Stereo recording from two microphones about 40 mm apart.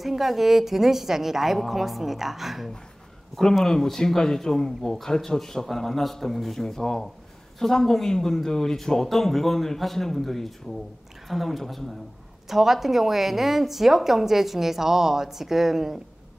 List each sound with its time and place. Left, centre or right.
0.0 s a woman's voice: centre
3.6 s a woman's voice: centre